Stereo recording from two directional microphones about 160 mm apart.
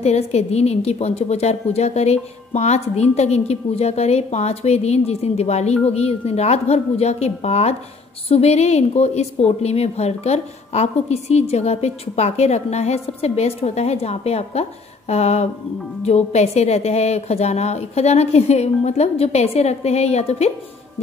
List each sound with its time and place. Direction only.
0.0 s a woman's voice: 40° left (ahead or behind)